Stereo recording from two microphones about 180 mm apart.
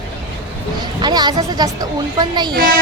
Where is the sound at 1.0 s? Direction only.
25° right (ahead or behind).